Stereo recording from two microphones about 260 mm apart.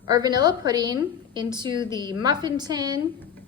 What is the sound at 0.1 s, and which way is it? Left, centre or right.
A woman's voice, centre.